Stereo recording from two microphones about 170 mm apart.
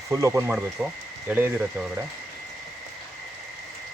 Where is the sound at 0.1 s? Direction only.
15° right (ahead or behind).